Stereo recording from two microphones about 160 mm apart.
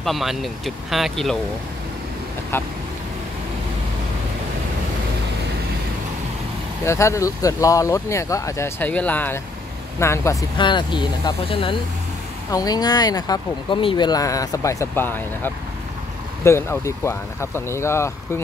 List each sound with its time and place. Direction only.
0.0 s speech: centre (ahead or behind)
2.5 s speech: 15° left (ahead or behind)
6.8 s speech: 15° left (ahead or behind)
10.6 s speech: 30° left (ahead or behind)
12.4 s speech: 25° left (ahead or behind)